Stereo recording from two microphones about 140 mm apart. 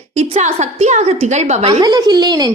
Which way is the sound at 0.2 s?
55° right (ahead or behind).